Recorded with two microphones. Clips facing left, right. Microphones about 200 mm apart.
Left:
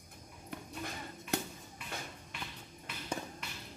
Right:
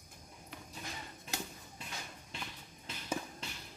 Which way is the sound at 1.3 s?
60° left (ahead or behind).